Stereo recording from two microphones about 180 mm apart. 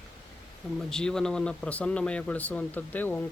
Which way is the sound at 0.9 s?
5° left (ahead or behind).